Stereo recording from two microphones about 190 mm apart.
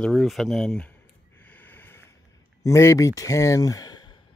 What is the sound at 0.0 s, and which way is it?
Speech, centre (ahead or behind).